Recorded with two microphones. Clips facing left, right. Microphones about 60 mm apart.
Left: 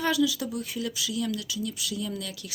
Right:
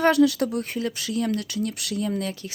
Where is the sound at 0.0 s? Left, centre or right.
Right.